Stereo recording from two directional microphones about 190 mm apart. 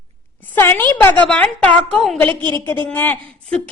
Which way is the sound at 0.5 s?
10° left (ahead or behind).